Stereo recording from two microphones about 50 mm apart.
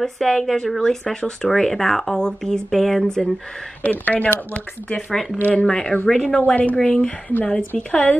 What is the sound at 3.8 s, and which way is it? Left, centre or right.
Speech, left.